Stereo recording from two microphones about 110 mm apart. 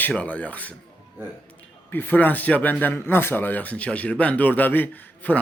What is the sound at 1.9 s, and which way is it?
Speech, 15° left (ahead or behind).